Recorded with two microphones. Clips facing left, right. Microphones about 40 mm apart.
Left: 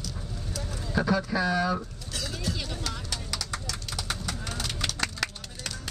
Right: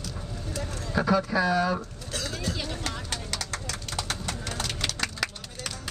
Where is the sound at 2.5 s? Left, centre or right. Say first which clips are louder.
Right 2 dB; centre.